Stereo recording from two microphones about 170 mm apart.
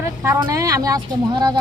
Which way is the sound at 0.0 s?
20° right (ahead or behind).